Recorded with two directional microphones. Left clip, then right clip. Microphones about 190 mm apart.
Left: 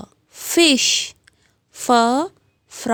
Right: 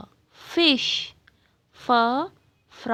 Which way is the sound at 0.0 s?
40° left (ahead or behind).